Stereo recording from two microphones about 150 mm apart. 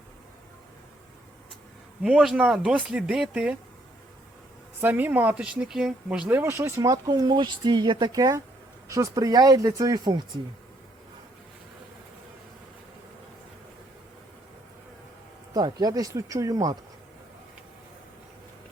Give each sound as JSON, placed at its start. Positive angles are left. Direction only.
{"t": 2.0, "sound": "speech", "side_deg": -5}
{"t": 4.8, "sound": "speech", "side_deg": -15}
{"t": 15.5, "sound": "speech", "side_deg": -25}